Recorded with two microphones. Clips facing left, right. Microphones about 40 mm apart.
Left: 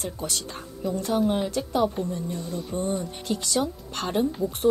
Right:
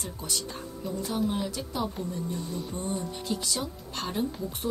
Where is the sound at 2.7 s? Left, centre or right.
Left.